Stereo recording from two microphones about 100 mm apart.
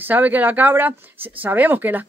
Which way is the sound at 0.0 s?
15° right (ahead or behind).